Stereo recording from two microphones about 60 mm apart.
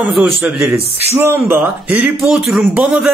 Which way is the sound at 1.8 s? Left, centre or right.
Right.